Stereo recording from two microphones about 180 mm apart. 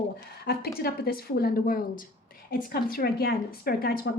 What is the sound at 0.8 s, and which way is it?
A woman's voice, 60° left (ahead or behind).